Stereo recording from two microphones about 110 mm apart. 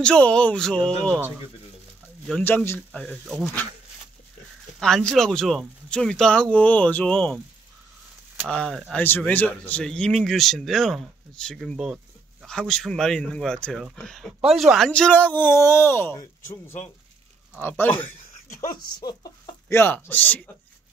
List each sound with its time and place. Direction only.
0.0 s speech: 10° left (ahead or behind)
2.4 s speech: 20° left (ahead or behind)
2.9 s speech: 10° left (ahead or behind)
4.7 s speech: 5° left (ahead or behind)
8.5 s speech: 5° left (ahead or behind)
8.9 s speech: 15° left (ahead or behind); by 12.4 s 5° right (ahead or behind)
12.4 s speech: 5° left (ahead or behind)
14.9 s speech: 10° left (ahead or behind)
18.9 s speech: 40° left (ahead or behind)
19.7 s speech: 20° left (ahead or behind)